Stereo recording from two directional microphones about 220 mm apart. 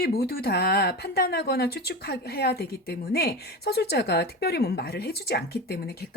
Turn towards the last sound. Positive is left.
turn(degrees=45)  # may be behind; listen again after turning